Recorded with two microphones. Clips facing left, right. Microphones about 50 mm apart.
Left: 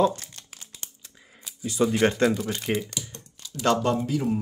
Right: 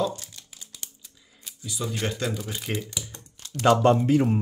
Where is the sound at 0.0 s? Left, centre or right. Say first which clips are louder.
Left 5 dB; left.